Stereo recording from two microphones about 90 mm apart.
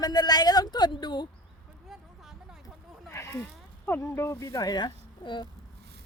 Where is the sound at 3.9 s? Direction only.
30° left (ahead or behind); by 5.4 s 55° left (ahead or behind).